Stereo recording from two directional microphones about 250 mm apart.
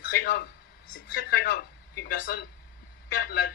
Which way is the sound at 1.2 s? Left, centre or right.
Left.